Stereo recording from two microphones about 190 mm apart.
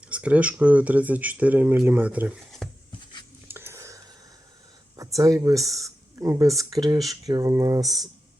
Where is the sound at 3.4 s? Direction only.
10° right (ahead or behind).